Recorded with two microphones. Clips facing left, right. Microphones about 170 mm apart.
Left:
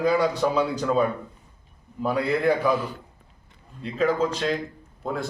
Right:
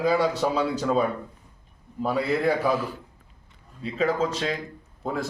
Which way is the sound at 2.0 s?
5° right (ahead or behind).